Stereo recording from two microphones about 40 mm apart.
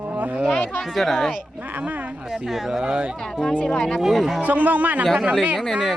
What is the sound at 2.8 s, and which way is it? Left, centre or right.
Speech, right.